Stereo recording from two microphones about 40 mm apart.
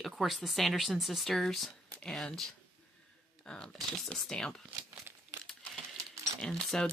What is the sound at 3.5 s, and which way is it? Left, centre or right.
Speech, left.